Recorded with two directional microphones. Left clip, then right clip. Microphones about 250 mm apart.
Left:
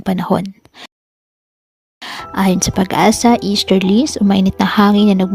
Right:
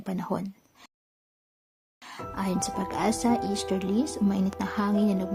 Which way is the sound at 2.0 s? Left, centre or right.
Left.